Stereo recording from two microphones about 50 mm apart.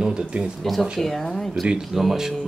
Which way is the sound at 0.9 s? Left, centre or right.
Centre.